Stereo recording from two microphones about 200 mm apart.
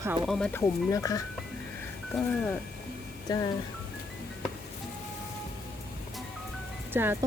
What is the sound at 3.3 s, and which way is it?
Speech, 20° left (ahead or behind).